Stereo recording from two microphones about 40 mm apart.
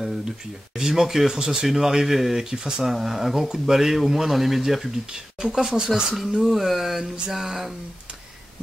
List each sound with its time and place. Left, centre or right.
0.0 s speech: centre
2.4 s speech: centre
5.0 s speech: centre
6.4 s speech: centre